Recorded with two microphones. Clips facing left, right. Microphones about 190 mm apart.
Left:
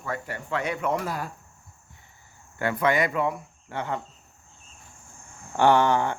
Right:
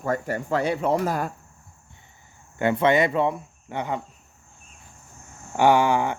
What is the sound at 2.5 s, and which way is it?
Speech, 25° right (ahead or behind).